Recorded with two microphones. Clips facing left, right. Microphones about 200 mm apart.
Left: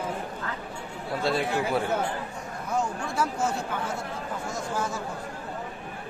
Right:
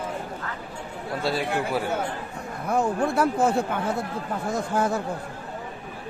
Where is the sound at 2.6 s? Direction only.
60° right (ahead or behind).